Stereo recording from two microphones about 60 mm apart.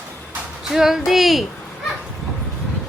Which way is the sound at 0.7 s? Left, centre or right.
Centre.